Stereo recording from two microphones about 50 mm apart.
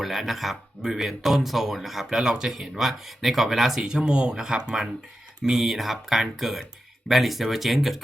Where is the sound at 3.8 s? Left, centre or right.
Centre.